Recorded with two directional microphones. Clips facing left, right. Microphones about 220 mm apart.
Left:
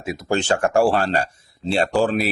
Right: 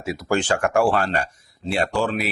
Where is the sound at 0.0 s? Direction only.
20° left (ahead or behind).